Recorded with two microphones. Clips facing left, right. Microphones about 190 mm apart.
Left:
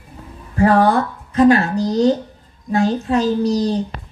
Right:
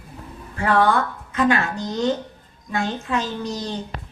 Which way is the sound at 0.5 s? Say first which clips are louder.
Left 5 dB; 40° left (ahead or behind).